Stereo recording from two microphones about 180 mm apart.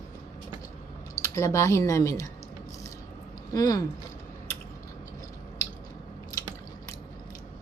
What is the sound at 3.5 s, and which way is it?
Speech, 20° left (ahead or behind).